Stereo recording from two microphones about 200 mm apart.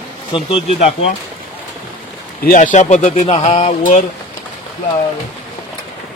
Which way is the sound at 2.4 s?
40° left (ahead or behind).